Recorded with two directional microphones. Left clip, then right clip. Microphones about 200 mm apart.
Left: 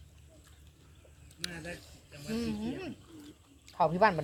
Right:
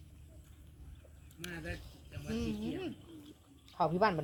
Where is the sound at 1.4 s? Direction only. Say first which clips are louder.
Left 3 dB; 45° right (ahead or behind).